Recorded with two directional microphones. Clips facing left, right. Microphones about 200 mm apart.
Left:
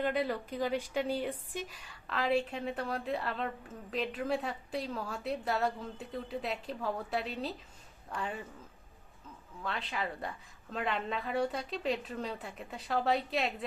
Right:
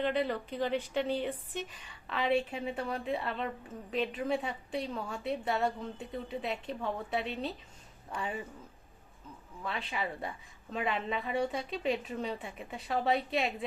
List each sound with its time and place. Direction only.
0.0 s a woman's voice: 5° left (ahead or behind)
9.6 s a woman's voice: centre (ahead or behind)